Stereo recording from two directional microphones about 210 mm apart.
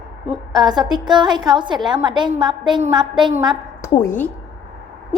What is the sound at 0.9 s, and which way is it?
A woman's voice, 20° right (ahead or behind).